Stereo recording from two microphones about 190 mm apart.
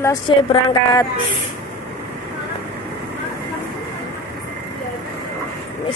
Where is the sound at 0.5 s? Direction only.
25° left (ahead or behind).